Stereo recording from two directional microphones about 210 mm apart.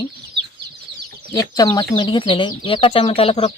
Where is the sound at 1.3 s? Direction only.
15° left (ahead or behind).